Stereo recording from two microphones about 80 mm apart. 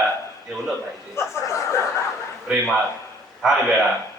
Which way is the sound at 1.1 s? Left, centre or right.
Left.